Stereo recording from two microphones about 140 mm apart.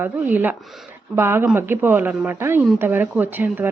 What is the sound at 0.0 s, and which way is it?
Speech, 15° right (ahead or behind).